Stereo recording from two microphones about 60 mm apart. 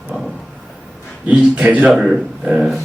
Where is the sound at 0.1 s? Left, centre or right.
Right.